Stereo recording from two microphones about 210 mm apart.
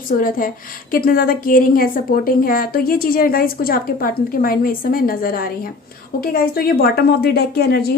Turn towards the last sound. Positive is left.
turn(degrees=50)  # may be behind; listen again after turning